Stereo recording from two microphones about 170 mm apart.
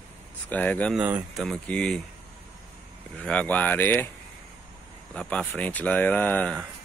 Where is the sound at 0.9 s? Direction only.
5° right (ahead or behind).